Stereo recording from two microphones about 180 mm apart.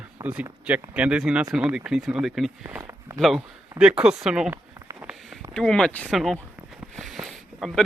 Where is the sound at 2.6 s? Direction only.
15° right (ahead or behind).